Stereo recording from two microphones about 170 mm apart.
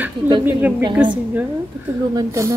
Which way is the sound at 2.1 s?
20° right (ahead or behind).